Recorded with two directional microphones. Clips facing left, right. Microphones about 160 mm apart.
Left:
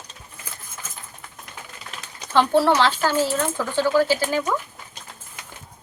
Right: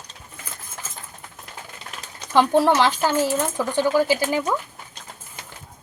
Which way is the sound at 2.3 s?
15° right (ahead or behind).